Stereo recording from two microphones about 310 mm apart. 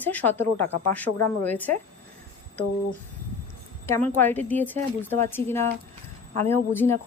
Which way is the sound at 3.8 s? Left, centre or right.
Centre.